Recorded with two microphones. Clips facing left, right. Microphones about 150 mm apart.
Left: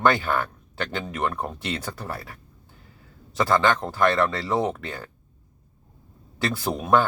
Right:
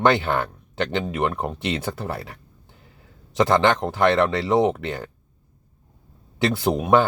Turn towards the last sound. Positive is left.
turn(degrees=-20)  # may be behind; listen again after turning